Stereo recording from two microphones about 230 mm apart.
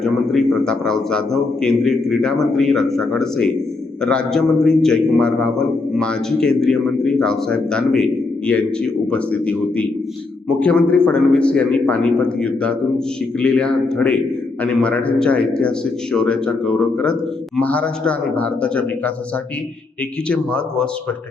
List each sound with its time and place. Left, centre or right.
0.0 s a man's voice: centre
20.2 s a man's voice: centre